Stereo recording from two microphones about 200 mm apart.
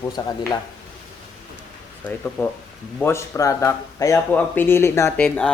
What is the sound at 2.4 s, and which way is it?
Speech, 15° left (ahead or behind).